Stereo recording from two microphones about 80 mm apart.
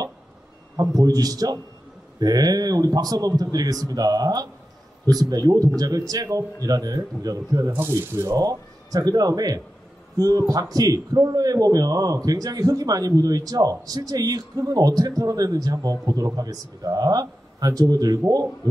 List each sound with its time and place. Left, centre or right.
0.7 s speech: right
7.7 s speech: right
8.4 s speech: right